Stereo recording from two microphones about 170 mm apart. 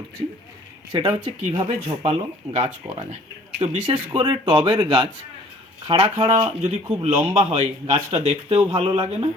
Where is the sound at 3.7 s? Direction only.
35° right (ahead or behind).